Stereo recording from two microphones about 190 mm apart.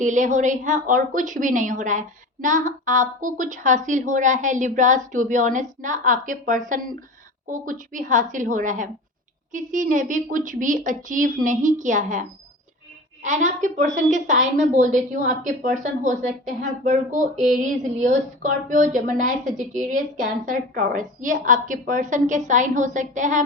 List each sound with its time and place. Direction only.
0.0 s a woman's voice: 40° right (ahead or behind)
13.2 s a woman's voice: 40° right (ahead or behind)